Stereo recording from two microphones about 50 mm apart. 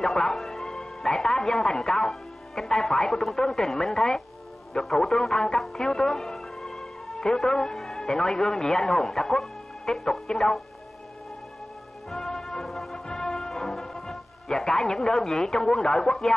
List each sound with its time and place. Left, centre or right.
0.0 s a man's voice: centre
12.1 s music: centre
14.7 s speech: centre